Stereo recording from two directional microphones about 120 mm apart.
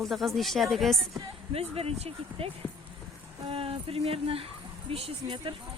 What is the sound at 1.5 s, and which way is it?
Speech, 55° right (ahead or behind).